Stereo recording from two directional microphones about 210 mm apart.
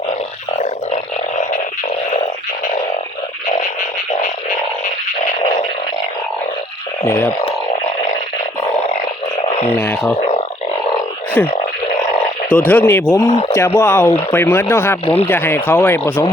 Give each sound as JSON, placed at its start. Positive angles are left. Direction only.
{"t": 7.0, "sound": "speech", "side_deg": 10}
{"t": 9.7, "sound": "speech", "side_deg": 10}
{"t": 10.2, "sound": "a sound", "side_deg": 30}
{"t": 11.4, "sound": "speech", "side_deg": 10}